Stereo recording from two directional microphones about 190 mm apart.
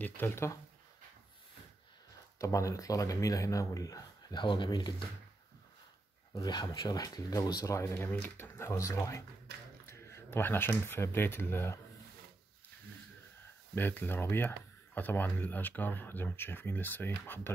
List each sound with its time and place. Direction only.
0.0 s speech: 10° left (ahead or behind)
2.3 s speech: 15° left (ahead or behind)
6.3 s speech: 20° left (ahead or behind)
13.7 s speech: 10° left (ahead or behind)